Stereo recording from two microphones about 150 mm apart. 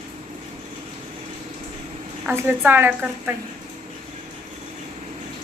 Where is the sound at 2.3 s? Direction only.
10° right (ahead or behind).